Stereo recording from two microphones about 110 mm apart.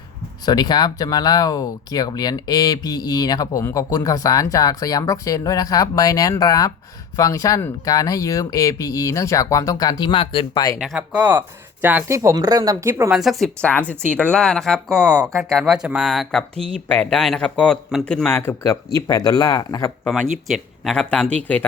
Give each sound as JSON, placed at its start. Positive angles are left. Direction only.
{"t": 0.4, "sound": "speech", "side_deg": 40}
{"t": 10.9, "sound": "speech", "side_deg": -15}
{"t": 12.1, "sound": "speech", "side_deg": -30}
{"t": 13.1, "sound": "speech", "side_deg": -5}
{"t": 13.9, "sound": "speech", "side_deg": -20}
{"t": 14.3, "sound": "speech", "side_deg": 5}
{"t": 15.0, "sound": "speech", "side_deg": -30}
{"t": 15.3, "sound": "speech", "side_deg": 0}
{"t": 18.6, "sound": "speech", "side_deg": 30}
{"t": 20.1, "sound": "speech", "side_deg": 0}